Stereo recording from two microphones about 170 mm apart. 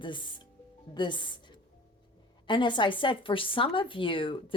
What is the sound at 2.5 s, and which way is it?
Speech, 30° left (ahead or behind).